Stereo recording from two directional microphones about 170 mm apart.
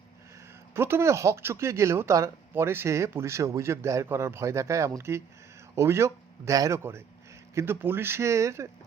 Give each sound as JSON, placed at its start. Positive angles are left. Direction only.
{"t": 0.7, "sound": "speech", "side_deg": -15}